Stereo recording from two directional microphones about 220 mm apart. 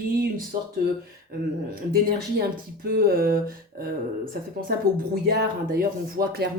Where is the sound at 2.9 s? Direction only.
40° right (ahead or behind).